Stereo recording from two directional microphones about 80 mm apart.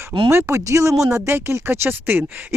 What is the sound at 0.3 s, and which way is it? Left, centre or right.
Speech, right.